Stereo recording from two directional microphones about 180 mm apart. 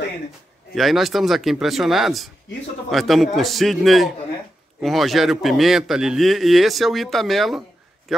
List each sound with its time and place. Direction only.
0.7 s speech: centre (ahead or behind)